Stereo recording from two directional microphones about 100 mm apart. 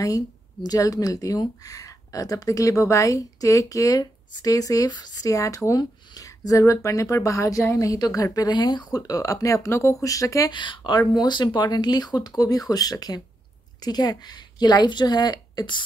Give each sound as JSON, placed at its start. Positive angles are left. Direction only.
{"t": 0.0, "sound": "speech", "side_deg": 35}
{"t": 10.5, "sound": "a woman's voice", "side_deg": 55}